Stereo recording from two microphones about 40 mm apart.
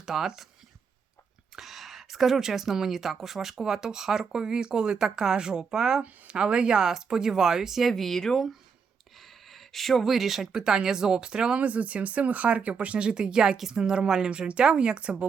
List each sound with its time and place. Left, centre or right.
0.0 s speech: centre
1.5 s speech: centre
6.0 s speech: right
6.4 s speech: right
7.9 s speech: centre
9.1 s a sound: centre
10.5 s speech: centre
11.6 s speech: right
13.1 s speech: right